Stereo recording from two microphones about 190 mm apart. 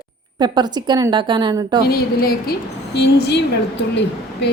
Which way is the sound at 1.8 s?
55° left (ahead or behind).